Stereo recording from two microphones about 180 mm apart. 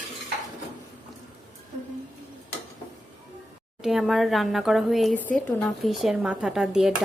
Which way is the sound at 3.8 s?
Centre (ahead or behind).